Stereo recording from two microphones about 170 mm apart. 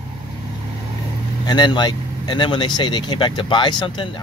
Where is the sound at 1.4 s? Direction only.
25° left (ahead or behind).